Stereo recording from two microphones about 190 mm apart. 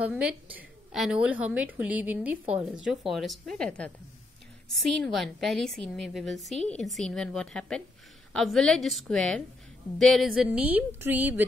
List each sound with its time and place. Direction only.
0.0 s a woman's voice: 5° right (ahead or behind)